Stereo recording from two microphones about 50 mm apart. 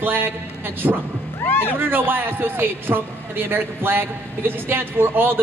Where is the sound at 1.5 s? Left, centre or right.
Left.